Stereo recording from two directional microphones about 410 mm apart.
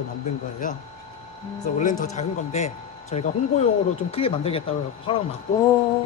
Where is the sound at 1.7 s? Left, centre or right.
Centre.